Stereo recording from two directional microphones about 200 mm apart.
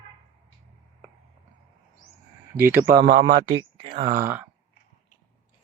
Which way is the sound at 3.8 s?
25° right (ahead or behind).